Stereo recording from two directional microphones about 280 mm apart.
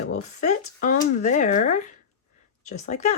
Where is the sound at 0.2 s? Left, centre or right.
Left.